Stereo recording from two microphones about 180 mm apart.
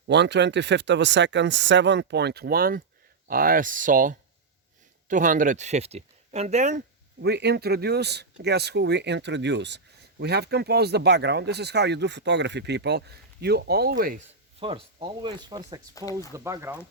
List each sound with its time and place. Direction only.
0.1 s speech: 75° right (ahead or behind); by 6.8 s 40° right (ahead or behind)
7.2 s speech: 70° right (ahead or behind)
14.6 s speech: 30° right (ahead or behind)
16.0 s speech: 20° left (ahead or behind)
16.3 s speech: 15° right (ahead or behind)